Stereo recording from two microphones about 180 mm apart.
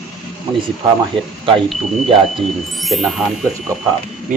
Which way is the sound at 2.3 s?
Centre (ahead or behind).